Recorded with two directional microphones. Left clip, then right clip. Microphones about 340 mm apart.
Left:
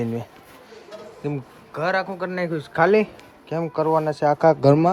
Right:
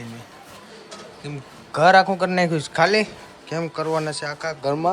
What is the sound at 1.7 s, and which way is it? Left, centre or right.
A man's voice, centre.